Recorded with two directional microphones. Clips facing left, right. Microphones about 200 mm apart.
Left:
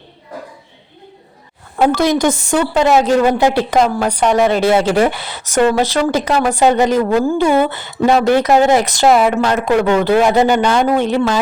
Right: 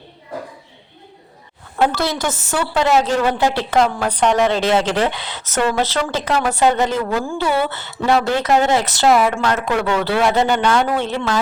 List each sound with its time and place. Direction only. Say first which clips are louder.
1.8 s speech: left 6 dB; 15° left (ahead or behind)